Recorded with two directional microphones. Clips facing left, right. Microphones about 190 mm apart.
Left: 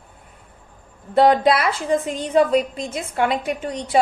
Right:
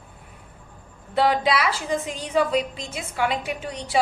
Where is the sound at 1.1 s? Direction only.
50° left (ahead or behind).